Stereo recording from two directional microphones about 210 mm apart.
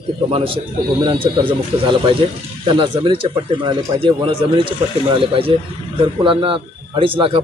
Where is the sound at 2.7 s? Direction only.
25° right (ahead or behind).